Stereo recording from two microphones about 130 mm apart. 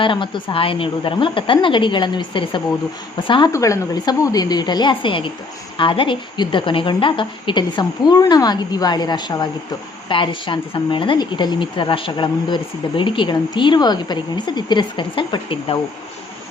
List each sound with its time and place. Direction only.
0.0 s a woman's voice: 40° left (ahead or behind)
3.5 s a woman's voice: 25° left (ahead or behind); by 15.8 s 40° left (ahead or behind)